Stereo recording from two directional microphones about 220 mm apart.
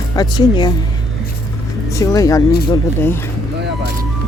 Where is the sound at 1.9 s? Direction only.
15° left (ahead or behind).